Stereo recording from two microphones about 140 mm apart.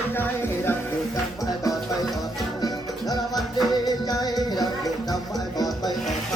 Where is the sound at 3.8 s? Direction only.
25° left (ahead or behind).